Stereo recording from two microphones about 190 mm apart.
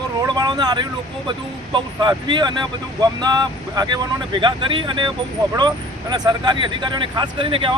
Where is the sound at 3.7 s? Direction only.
20° right (ahead or behind).